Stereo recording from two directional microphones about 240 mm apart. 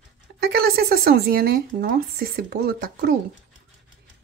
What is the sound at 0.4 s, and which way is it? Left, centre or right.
Speech, right.